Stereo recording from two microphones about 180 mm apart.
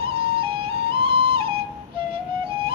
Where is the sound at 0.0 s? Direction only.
30° right (ahead or behind).